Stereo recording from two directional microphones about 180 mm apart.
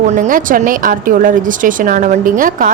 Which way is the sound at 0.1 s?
45° right (ahead or behind).